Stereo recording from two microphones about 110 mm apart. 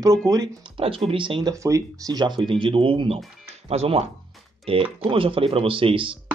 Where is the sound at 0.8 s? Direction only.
55° right (ahead or behind).